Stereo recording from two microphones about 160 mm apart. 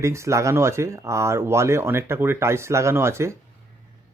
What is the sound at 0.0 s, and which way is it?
Speech, 20° right (ahead or behind).